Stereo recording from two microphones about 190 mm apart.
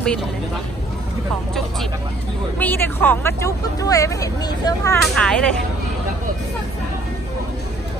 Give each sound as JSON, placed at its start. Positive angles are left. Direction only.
{"t": 2.6, "sound": "speech", "side_deg": 10}
{"t": 5.0, "sound": "speech", "side_deg": 5}